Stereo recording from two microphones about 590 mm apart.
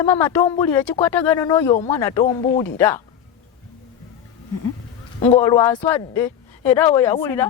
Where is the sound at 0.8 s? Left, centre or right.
Left.